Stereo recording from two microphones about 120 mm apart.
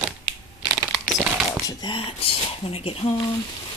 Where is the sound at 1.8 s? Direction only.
45° left (ahead or behind).